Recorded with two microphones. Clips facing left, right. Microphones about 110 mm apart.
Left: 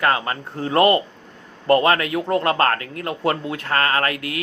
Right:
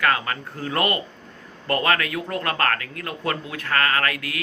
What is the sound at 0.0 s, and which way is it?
A man's voice, 25° left (ahead or behind).